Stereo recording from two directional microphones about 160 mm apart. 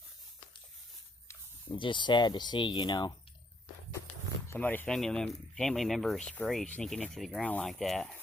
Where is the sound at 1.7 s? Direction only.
30° left (ahead or behind).